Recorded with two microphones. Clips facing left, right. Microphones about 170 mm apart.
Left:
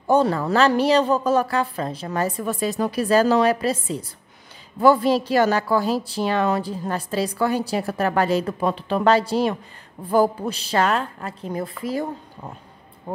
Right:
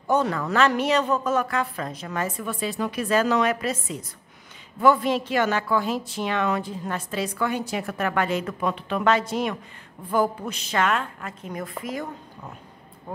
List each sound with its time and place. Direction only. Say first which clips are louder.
0.0 s a woman's voice: left 4 dB; 30° left (ahead or behind)